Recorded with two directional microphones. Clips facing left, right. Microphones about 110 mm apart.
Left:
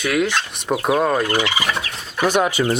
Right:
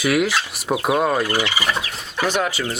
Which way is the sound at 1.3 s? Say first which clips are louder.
Left 2 dB; 20° left (ahead or behind).